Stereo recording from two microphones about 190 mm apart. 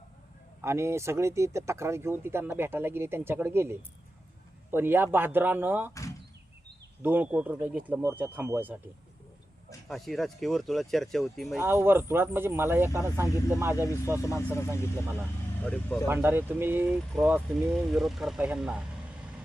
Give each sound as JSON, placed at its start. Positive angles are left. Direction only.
{"t": 0.6, "sound": "speech", "side_deg": -15}
{"t": 5.9, "sound": "door", "side_deg": 15}
{"t": 7.0, "sound": "speech", "side_deg": -10}
{"t": 9.9, "sound": "speech", "side_deg": 0}
{"t": 11.5, "sound": "speech", "side_deg": -10}
{"t": 15.6, "sound": "speech", "side_deg": 5}
{"t": 16.0, "sound": "speech", "side_deg": -10}